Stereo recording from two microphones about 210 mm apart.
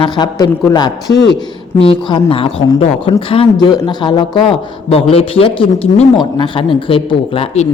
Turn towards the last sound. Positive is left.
turn(degrees=30)  # may be behind; listen again after turning